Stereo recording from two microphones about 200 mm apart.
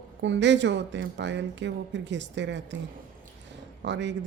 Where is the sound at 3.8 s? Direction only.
65° right (ahead or behind).